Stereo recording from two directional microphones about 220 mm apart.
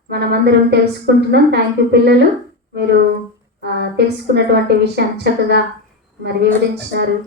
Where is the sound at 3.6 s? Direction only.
50° right (ahead or behind).